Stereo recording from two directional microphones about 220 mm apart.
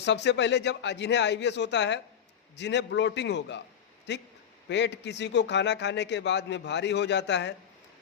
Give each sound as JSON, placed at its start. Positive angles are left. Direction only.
{"t": 0.0, "sound": "a man's voice", "side_deg": 50}